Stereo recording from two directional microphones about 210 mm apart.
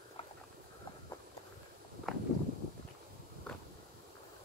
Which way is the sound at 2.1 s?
Centre (ahead or behind).